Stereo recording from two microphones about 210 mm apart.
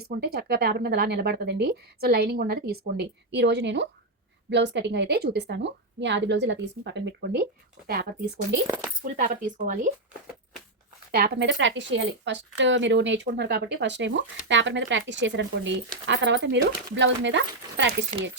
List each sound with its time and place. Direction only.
0.2 s speech: 50° right (ahead or behind)
8.6 s speech: 15° right (ahead or behind)
9.0 s speech: 40° right (ahead or behind)
11.1 s speech: 50° right (ahead or behind)
18.1 s speech: 35° right (ahead or behind)